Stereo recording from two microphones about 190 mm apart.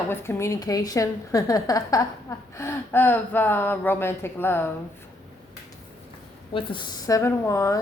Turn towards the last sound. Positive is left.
turn(degrees=15)  # may be behind; listen again after turning